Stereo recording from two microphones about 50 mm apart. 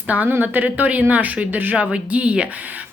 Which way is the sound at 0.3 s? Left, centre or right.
Right.